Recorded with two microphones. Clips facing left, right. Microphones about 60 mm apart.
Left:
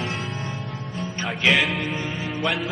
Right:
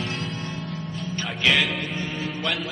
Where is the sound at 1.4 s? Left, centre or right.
Centre.